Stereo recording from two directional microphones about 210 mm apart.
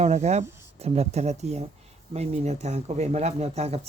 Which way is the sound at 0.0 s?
30° right (ahead or behind).